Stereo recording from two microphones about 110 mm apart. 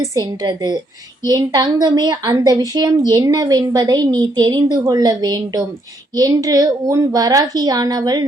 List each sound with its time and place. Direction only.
0.0 s a woman's voice: 35° right (ahead or behind)